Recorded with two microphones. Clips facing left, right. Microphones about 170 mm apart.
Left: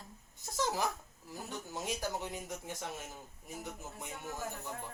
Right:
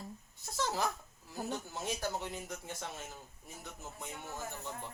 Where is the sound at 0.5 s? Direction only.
15° left (ahead or behind).